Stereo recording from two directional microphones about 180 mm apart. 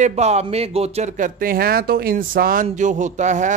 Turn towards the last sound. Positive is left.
turn(degrees=-40)  # may be behind; listen again after turning